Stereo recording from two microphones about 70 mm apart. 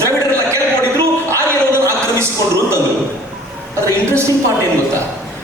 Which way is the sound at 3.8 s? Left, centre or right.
Right.